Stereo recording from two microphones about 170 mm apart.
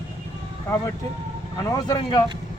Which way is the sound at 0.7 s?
15° left (ahead or behind).